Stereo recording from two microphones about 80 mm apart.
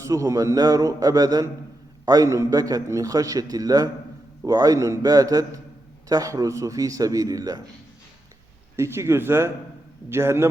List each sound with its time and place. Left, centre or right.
0.0 s a man's voice: right
8.7 s speech: right